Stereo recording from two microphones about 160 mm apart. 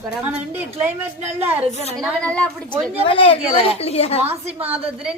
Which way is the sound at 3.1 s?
35° left (ahead or behind).